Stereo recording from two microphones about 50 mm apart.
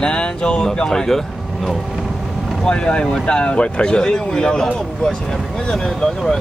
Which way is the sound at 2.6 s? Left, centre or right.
Centre.